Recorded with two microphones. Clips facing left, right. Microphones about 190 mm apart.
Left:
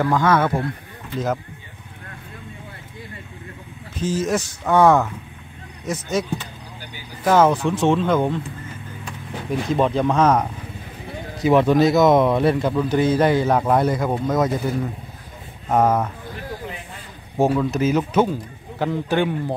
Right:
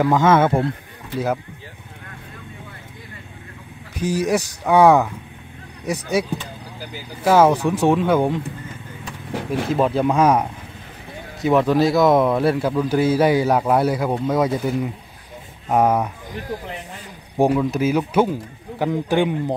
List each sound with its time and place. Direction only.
0.0 s speech: 20° right (ahead or behind)
1.1 s speech: 10° right (ahead or behind)
3.9 s speech: 15° right (ahead or behind)
9.5 s speech: 5° right (ahead or behind)
11.4 s speech: centre (ahead or behind)
17.4 s speech: 15° right (ahead or behind)